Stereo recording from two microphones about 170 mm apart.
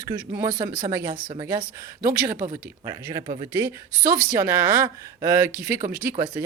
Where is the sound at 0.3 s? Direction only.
15° right (ahead or behind).